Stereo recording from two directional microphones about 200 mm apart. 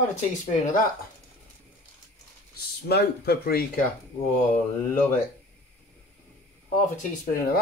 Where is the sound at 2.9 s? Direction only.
50° left (ahead or behind).